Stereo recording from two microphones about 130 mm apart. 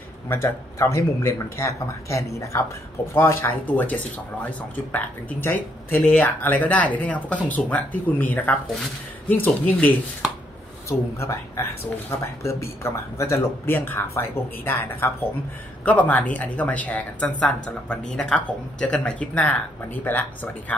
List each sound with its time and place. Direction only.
0.3 s speech: 20° left (ahead or behind)